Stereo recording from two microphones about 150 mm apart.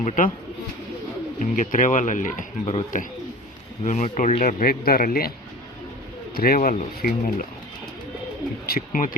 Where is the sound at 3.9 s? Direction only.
55° left (ahead or behind); by 5.3 s 85° left.